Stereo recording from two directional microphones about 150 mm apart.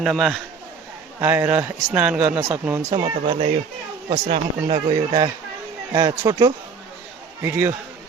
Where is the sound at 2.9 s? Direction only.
35° right (ahead or behind).